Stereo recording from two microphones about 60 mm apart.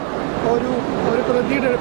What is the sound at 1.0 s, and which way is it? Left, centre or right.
Speech, right.